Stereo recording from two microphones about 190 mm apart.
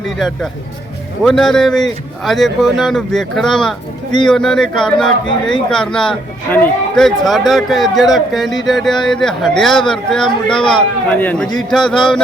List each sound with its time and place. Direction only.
1.2 s speech: centre (ahead or behind)